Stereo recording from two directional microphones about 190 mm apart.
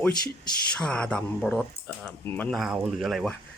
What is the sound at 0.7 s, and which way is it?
Speech, 5° left (ahead or behind).